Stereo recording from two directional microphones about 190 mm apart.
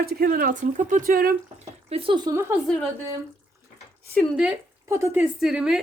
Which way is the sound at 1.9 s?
25° right (ahead or behind).